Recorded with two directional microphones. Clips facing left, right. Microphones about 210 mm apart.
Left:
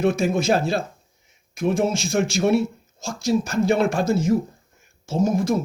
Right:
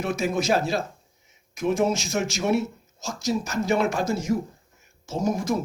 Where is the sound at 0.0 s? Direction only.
30° left (ahead or behind).